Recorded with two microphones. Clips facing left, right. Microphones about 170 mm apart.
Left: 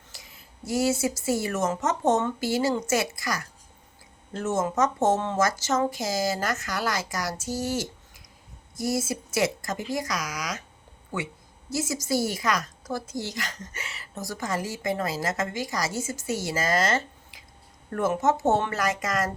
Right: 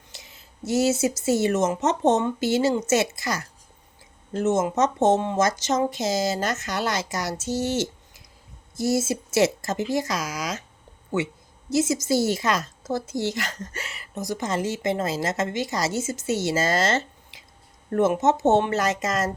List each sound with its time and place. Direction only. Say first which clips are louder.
0.1 s a woman's voice: right 2 dB; 25° right (ahead or behind)
11.7 s a woman's voice: right 5 dB; 20° right (ahead or behind)